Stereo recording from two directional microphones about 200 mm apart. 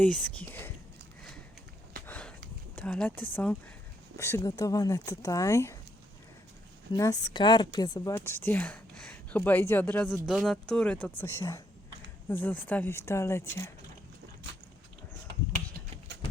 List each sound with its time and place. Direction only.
0.0 s speech: 5° left (ahead or behind)
2.0 s sniff: 5° left (ahead or behind)
2.7 s speech: 5° left (ahead or behind)
6.9 s speech: 20° left (ahead or behind)
16.1 s clip-clop: 60° right (ahead or behind)